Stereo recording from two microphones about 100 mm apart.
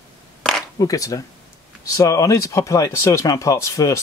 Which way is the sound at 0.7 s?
35° left (ahead or behind).